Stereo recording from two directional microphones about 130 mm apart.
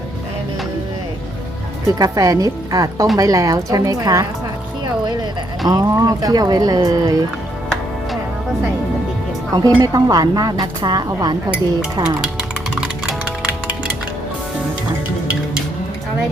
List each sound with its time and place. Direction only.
1.9 s speech: 25° right (ahead or behind)
5.6 s speech: 30° right (ahead or behind)
9.5 s speech: 25° right (ahead or behind)
12.2 s music: 5° right (ahead or behind)